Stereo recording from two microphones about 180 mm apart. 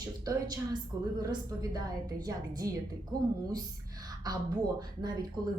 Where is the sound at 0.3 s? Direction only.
20° right (ahead or behind).